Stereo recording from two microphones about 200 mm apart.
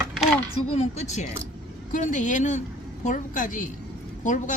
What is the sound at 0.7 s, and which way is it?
Speech, 35° left (ahead or behind).